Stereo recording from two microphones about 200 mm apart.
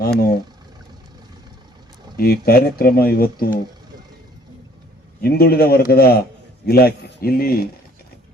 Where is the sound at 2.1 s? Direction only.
50° left (ahead or behind).